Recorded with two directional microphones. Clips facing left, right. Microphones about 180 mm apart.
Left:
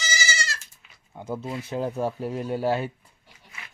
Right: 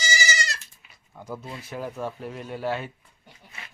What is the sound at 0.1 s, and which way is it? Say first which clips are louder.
Goat: right 2 dB; 15° right (ahead or behind).